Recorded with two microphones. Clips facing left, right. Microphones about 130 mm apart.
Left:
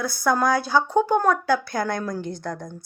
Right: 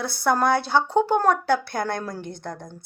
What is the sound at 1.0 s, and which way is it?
A woman's voice, 30° right (ahead or behind).